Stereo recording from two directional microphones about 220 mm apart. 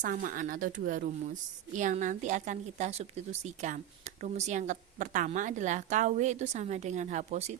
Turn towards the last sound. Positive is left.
turn(degrees=-35)  # may be behind; listen again after turning